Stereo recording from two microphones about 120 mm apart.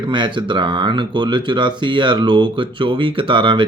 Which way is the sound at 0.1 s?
40° right (ahead or behind).